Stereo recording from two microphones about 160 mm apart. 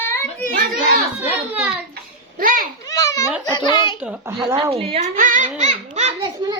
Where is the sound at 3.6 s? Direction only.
30° left (ahead or behind).